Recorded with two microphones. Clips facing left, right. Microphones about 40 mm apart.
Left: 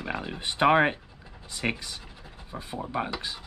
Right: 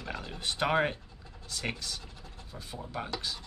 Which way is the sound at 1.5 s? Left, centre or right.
Left.